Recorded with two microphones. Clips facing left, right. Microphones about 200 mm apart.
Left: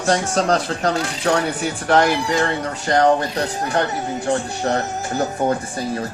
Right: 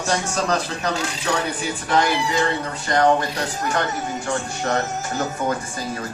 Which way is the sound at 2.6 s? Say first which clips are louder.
Left 3 dB; 40° left (ahead or behind).